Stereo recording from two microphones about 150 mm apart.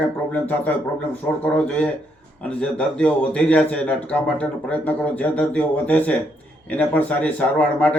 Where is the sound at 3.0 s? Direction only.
10° left (ahead or behind).